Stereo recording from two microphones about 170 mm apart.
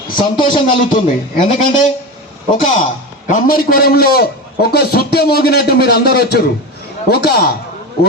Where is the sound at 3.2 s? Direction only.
60° left (ahead or behind).